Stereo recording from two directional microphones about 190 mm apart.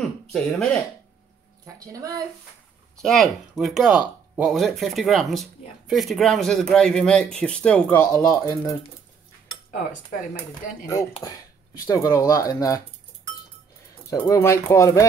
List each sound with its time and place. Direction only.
0.3 s speech: 5° left (ahead or behind)
1.8 s speech: 20° right (ahead or behind)
3.0 s speech: centre (ahead or behind); by 8.7 s 15° left (ahead or behind)
11.8 s speech: 15° left (ahead or behind)
14.1 s speech: 15° left (ahead or behind)